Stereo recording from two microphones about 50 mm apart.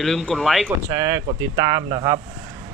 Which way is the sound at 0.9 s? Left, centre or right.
Right.